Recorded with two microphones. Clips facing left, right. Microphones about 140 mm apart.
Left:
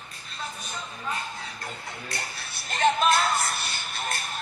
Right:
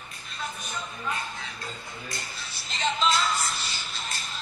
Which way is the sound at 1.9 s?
65° left (ahead or behind).